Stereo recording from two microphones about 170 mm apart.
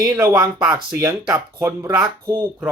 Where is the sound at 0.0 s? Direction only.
20° right (ahead or behind).